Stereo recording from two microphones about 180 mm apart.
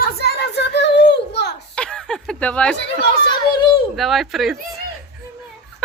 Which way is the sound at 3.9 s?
Centre (ahead or behind).